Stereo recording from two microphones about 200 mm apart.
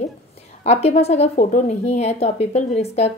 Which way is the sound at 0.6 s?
30° left (ahead or behind).